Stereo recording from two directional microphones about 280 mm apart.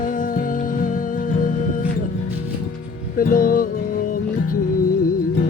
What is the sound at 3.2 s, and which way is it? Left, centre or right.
Music, left.